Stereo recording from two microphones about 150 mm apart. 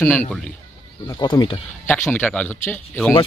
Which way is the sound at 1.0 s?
30° left (ahead or behind).